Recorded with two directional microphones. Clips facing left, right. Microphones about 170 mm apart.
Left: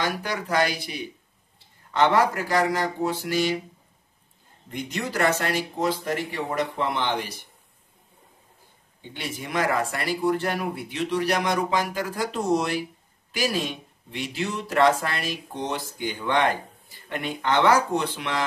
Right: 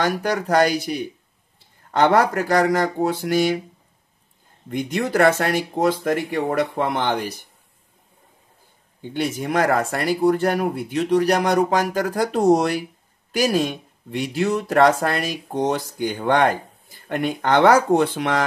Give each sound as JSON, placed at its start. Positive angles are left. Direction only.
{"t": 0.0, "sound": "speech", "side_deg": -45}
{"t": 4.6, "sound": "speech", "side_deg": -50}
{"t": 9.1, "sound": "speech", "side_deg": -45}